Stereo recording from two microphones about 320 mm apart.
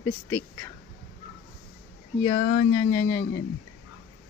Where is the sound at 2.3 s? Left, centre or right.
Left.